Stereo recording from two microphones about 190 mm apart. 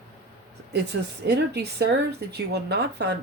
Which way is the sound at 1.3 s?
60° right (ahead or behind).